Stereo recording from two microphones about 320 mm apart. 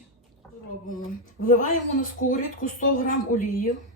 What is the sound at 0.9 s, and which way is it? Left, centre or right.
Speech, left.